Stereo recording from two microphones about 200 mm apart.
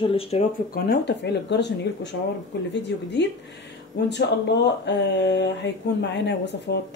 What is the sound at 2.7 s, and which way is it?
Speech, 60° left (ahead or behind).